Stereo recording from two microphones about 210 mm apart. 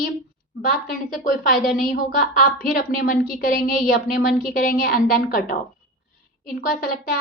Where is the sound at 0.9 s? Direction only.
40° left (ahead or behind).